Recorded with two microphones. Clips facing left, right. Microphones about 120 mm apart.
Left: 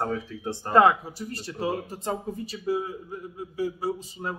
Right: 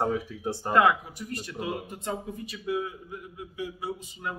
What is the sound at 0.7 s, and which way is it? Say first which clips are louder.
Speech: left 3 dB; 30° left (ahead or behind).